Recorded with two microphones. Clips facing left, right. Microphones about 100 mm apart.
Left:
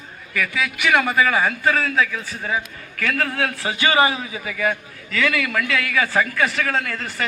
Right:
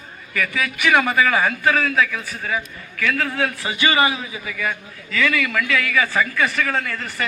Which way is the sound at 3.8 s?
30° left (ahead or behind).